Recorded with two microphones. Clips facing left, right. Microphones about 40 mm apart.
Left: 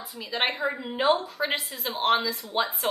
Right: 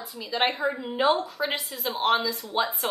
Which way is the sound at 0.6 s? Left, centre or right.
Centre.